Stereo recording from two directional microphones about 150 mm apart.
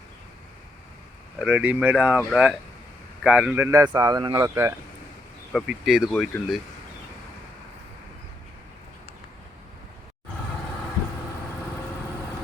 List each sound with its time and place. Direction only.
1.4 s speech: 10° right (ahead or behind)
5.5 s speech: centre (ahead or behind)